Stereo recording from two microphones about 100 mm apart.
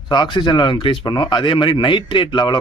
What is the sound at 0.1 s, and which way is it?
A man's voice, 50° left (ahead or behind).